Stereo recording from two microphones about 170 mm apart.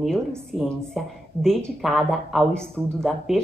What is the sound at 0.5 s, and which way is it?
Speech, centre (ahead or behind).